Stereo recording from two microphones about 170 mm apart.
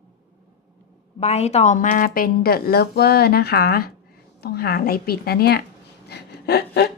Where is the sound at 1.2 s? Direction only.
40° left (ahead or behind); by 5.6 s 70° left (ahead or behind).